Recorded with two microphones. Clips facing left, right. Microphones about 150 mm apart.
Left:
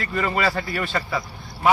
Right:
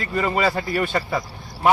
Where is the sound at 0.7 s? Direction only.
40° right (ahead or behind).